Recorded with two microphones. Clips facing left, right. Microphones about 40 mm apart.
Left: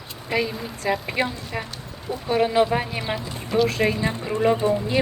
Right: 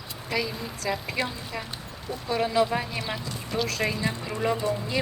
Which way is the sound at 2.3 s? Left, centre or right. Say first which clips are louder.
Left 5 dB; left.